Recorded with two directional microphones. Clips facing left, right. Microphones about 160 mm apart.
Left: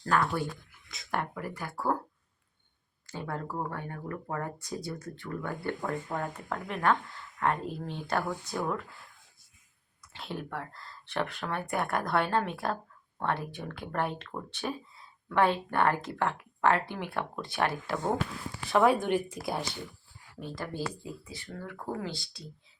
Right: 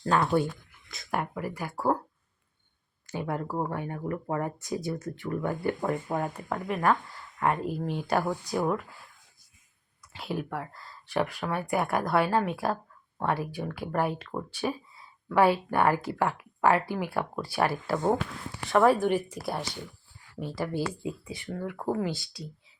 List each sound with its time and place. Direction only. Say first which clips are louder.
0.0 s speech: right 4 dB; 20° right (ahead or behind)
0.9 s speech: right 2 dB; 5° right (ahead or behind)
3.1 s speech: right 5 dB; 15° right (ahead or behind)
10.1 s speech: right 5 dB; 5° right (ahead or behind)
18.7 s speech: right 2 dB; 5° left (ahead or behind)
18.9 s speech: right 3 dB; 5° right (ahead or behind)
20.6 s speech: right 5 dB; 10° right (ahead or behind)
21.0 s speech: right 7 dB; 20° right (ahead or behind)
22.2 s speech: right 7 dB; 5° right (ahead or behind)